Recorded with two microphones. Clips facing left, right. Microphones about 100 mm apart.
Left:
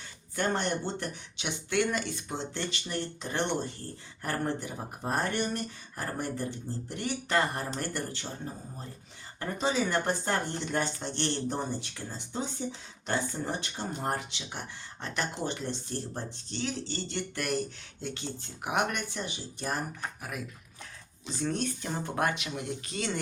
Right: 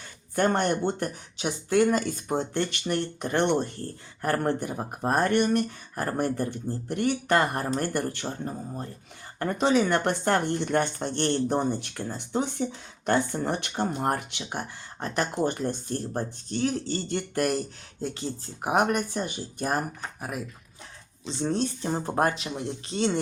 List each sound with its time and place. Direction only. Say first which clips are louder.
0.3 s speech: right 6 dB; 50° right (ahead or behind)
9.4 s speech: right 6 dB; 60° right (ahead or behind)
21.2 s speech: right 4 dB; 30° right (ahead or behind)